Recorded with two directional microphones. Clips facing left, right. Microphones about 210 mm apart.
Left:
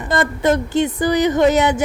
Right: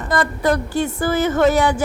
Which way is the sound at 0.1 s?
25° left (ahead or behind).